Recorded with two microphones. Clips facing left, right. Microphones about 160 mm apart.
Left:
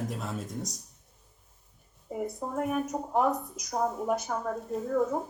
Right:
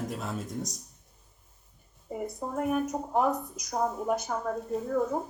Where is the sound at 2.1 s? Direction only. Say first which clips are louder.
Left 1 dB; centre (ahead or behind).